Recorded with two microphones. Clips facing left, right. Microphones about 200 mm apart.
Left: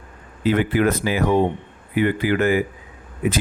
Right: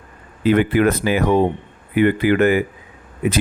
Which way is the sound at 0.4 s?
60° right (ahead or behind).